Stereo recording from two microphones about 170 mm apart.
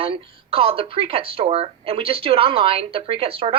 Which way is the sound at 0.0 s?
35° right (ahead or behind).